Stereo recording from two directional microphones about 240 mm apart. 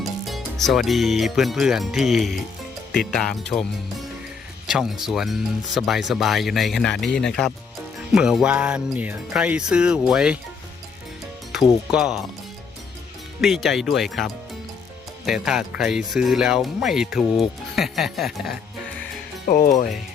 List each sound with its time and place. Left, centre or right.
0.0 s speech: centre
11.5 s speech: centre
13.4 s speech: centre
19.5 s speech: left